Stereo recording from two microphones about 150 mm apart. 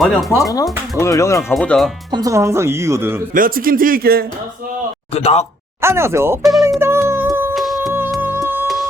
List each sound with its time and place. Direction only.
0.0 s speech: centre (ahead or behind)
0.3 s speech: 25° left (ahead or behind)
1.5 s speech: 5° left (ahead or behind)
2.1 s speech: 20° right (ahead or behind)
3.3 s speech: 70° right (ahead or behind)
5.1 s speech: 45° left (ahead or behind)
5.8 s speech: 20° right (ahead or behind)
6.4 s music: centre (ahead or behind)
6.7 s music: 15° right (ahead or behind)
7.5 s music: centre (ahead or behind)
8.2 s music: 15° right (ahead or behind)
8.6 s music: centre (ahead or behind)